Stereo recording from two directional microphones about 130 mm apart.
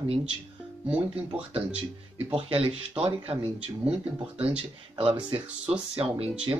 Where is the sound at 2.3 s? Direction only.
45° right (ahead or behind).